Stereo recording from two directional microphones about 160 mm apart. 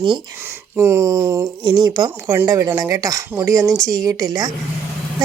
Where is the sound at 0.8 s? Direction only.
20° right (ahead or behind).